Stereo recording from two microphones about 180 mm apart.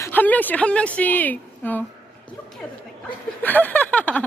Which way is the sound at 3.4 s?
10° left (ahead or behind).